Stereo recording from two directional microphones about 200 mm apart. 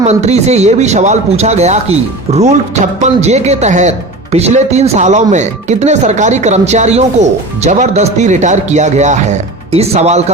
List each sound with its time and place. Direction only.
0.0 s speech: 35° right (ahead or behind)